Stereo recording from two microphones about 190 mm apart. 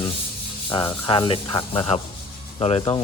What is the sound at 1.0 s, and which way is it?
Speech, 25° left (ahead or behind).